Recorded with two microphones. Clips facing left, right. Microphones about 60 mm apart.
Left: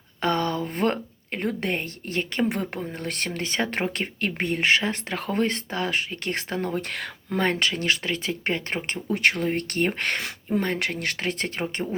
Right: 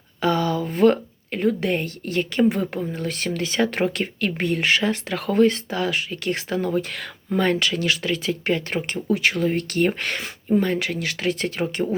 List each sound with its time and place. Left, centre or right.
0.2 s speech: left
10.2 s speech: left